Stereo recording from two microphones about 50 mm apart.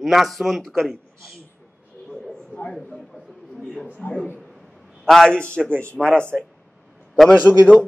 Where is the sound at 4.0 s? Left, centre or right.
Left.